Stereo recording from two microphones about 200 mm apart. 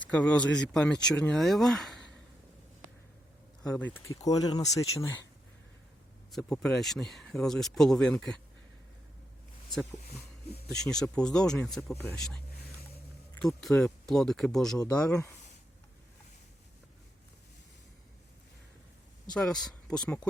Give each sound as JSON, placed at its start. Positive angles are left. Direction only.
{"t": 0.0, "sound": "speech", "side_deg": 5}
{"t": 3.7, "sound": "speech", "side_deg": 10}
{"t": 6.3, "sound": "speech", "side_deg": 5}
{"t": 10.8, "sound": "speech", "side_deg": 5}
{"t": 19.3, "sound": "speech", "side_deg": 5}